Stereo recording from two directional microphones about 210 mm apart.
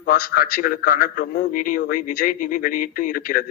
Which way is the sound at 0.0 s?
45° left (ahead or behind).